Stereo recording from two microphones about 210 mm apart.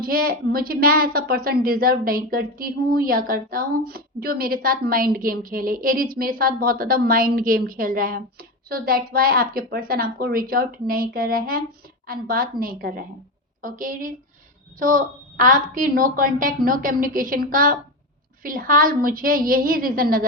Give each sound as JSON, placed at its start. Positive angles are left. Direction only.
{"t": 0.0, "sound": "a woman's voice", "side_deg": -45}